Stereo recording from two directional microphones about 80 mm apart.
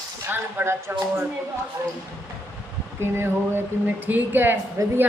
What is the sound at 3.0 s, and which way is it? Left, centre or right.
Speech, right.